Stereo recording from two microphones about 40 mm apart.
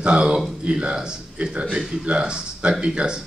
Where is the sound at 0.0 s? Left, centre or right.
Right.